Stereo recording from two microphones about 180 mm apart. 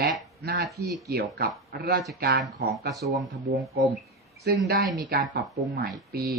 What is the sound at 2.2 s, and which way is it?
Speech, 65° right (ahead or behind).